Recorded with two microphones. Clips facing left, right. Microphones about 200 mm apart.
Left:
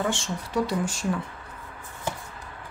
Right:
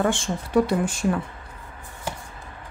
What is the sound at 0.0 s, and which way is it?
Speech, 55° right (ahead or behind).